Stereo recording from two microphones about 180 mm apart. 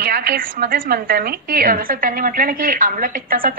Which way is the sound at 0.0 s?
55° right (ahead or behind).